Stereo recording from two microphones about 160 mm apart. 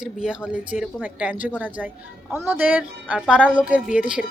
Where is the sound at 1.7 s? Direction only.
10° right (ahead or behind).